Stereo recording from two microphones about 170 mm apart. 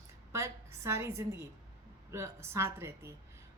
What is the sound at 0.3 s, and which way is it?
A woman's voice, 15° right (ahead or behind).